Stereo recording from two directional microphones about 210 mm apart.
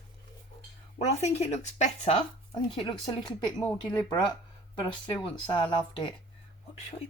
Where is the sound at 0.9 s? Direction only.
30° left (ahead or behind).